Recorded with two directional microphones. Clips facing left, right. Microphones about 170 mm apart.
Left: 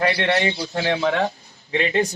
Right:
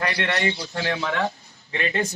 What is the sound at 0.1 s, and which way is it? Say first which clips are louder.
Speech: left 4 dB; 30° left (ahead or behind).